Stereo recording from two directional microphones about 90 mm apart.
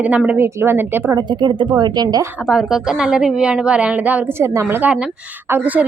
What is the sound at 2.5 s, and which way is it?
A woman's voice, 5° right (ahead or behind).